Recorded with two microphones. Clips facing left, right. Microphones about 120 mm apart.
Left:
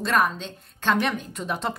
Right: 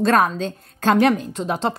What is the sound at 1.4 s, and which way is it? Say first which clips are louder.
Speech: right 6 dB; 30° right (ahead or behind).